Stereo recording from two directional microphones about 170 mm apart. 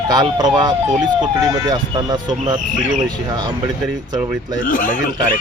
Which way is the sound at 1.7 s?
25° right (ahead or behind).